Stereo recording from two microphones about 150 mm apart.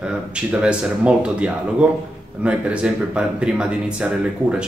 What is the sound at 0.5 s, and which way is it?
Speech, 5° right (ahead or behind).